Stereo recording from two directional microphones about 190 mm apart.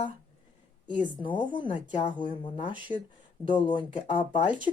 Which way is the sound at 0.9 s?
10° right (ahead or behind).